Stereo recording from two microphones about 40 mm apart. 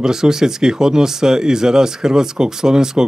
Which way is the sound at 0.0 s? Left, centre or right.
Centre.